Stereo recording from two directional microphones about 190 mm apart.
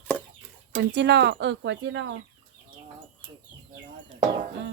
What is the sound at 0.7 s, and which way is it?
Speech, 60° right (ahead or behind).